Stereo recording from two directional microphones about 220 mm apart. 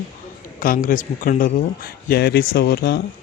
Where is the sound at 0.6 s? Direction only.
40° left (ahead or behind).